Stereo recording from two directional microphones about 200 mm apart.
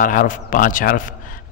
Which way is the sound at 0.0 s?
40° left (ahead or behind).